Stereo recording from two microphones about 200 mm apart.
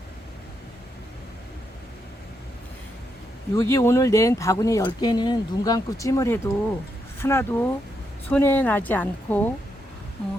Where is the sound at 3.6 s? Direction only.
15° left (ahead or behind).